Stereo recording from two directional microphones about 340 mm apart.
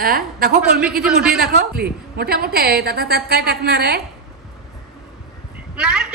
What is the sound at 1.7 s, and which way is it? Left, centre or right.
A woman's voice, right.